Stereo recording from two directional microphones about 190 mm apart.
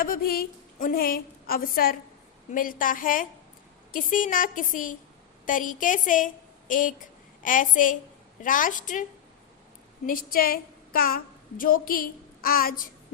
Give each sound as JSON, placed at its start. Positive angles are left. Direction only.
{"t": 0.0, "sound": "a woman's voice", "side_deg": 50}
{"t": 10.1, "sound": "a woman's voice", "side_deg": 50}